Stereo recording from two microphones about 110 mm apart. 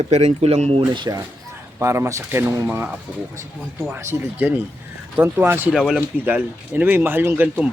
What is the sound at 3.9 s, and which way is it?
Speech, 20° right (ahead or behind).